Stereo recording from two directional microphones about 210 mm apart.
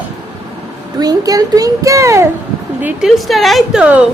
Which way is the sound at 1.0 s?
15° right (ahead or behind).